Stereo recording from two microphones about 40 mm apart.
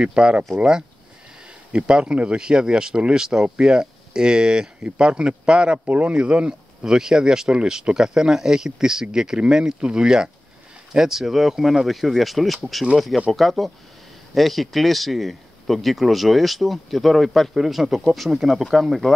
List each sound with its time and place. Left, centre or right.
0.0 s speech: right
1.7 s speech: right
5.9 s speech: right
6.1 s speech: right
6.9 s speech: centre